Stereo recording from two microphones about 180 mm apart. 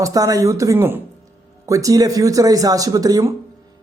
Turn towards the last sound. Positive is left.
turn(degrees=-20)  # may be behind; listen again after turning